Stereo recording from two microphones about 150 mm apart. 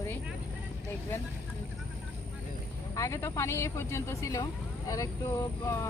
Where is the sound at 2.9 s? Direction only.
20° left (ahead or behind).